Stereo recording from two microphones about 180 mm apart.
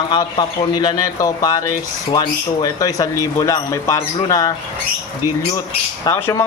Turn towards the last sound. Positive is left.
turn(degrees=15)  # may be behind; listen again after turning